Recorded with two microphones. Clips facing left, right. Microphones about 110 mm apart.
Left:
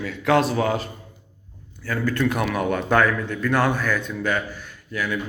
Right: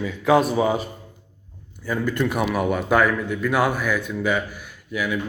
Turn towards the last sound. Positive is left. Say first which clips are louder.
# right 1 dB
turn(degrees=-10)  # may be behind; listen again after turning